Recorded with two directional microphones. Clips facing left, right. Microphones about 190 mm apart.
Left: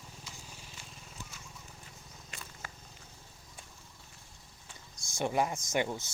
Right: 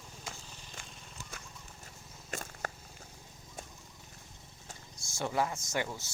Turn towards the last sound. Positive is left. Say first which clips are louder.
# left 3 dB
turn(degrees=20)  # may be behind; listen again after turning